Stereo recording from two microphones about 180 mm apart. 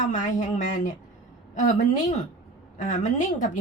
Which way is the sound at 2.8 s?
40° left (ahead or behind).